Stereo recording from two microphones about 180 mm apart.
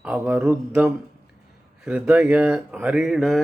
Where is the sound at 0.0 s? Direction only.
10° right (ahead or behind).